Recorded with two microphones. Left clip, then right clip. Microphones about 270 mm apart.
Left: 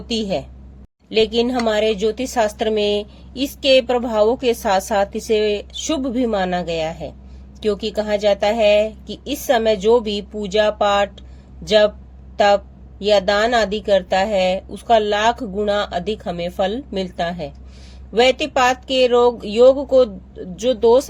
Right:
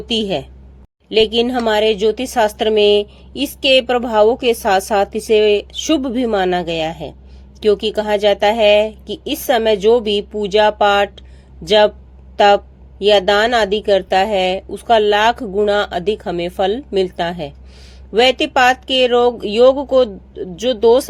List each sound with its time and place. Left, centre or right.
0.1 s a woman's voice: right